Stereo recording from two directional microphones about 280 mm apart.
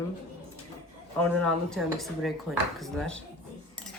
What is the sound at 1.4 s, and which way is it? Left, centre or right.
Speech, centre.